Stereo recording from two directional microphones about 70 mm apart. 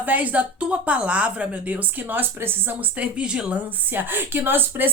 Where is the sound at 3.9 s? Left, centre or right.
Right.